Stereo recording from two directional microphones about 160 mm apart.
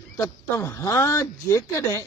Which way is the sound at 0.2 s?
20° left (ahead or behind).